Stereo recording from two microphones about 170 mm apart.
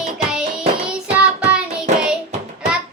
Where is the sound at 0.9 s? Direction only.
5° right (ahead or behind).